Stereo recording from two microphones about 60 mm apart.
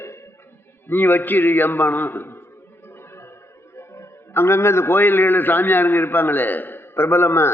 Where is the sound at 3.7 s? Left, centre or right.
Left.